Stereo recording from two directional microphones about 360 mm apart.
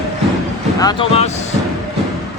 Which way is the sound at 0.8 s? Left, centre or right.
Centre.